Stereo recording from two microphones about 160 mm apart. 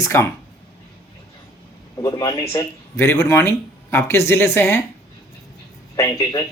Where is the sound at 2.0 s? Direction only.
25° left (ahead or behind).